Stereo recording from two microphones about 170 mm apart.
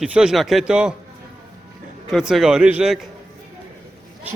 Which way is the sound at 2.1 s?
Centre (ahead or behind).